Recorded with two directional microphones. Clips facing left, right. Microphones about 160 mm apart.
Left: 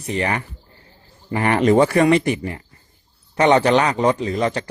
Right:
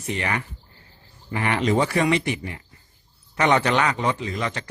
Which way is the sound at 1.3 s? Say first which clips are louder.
Left 6 dB; 45° left (ahead or behind).